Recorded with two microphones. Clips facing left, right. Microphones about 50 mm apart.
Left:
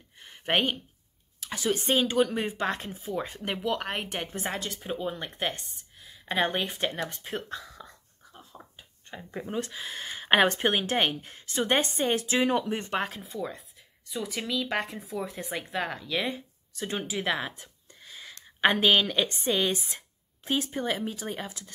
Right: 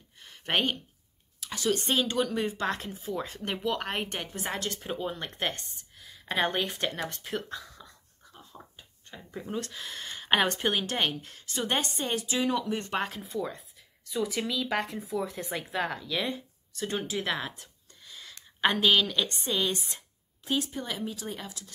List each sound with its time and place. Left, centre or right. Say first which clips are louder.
0.2 s a sound: left 3 dB; centre
1.4 s speech: even; centre
4.2 s speech: left 3 dB; left
4.5 s speech: right 2 dB; centre
7.3 s speech: left 1 dB; left
8.2 s a sound: even; centre
9.3 s speech: left 2 dB; left
12.9 s speech: even; centre
17.6 s a sound: left 3 dB; left
18.6 s speech: left 2 dB; left